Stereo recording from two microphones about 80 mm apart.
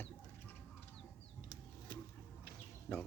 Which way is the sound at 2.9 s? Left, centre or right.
Centre.